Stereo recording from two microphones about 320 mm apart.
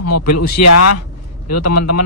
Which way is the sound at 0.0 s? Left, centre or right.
Left.